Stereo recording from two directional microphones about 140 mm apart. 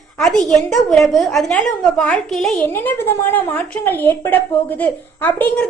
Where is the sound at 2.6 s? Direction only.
15° left (ahead or behind).